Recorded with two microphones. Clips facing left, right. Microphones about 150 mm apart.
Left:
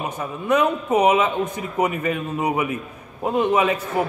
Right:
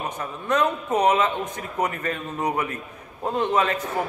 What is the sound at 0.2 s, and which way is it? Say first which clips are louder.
A man's voice: left 4 dB; 10° left (ahead or behind).